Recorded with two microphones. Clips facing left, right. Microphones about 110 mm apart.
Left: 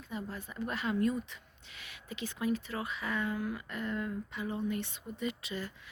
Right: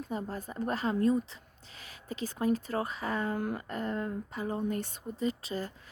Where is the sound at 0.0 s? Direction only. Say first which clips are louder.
Right 5 dB; 40° right (ahead or behind).